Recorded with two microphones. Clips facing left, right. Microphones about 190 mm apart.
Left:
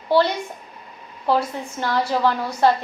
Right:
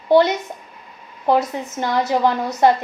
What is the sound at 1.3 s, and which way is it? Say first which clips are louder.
A woman's voice: right 3 dB; 20° right (ahead or behind).